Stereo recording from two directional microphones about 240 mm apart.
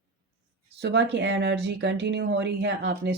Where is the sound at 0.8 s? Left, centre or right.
Right.